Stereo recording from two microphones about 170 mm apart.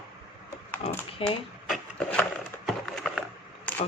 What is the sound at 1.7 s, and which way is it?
Wood, 5° left (ahead or behind).